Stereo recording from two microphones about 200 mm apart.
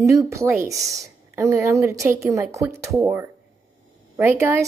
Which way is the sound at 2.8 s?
Centre (ahead or behind).